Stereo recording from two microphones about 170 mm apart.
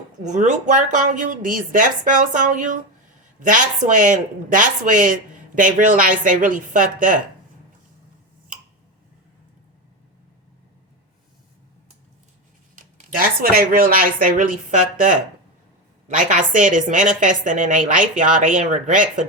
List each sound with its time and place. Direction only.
0.3 s speech: 45° right (ahead or behind)
12.7 s speech: 50° right (ahead or behind)
16.0 s speech: 50° right (ahead or behind)